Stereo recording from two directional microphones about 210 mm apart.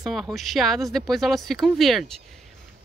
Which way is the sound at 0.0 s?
Centre (ahead or behind).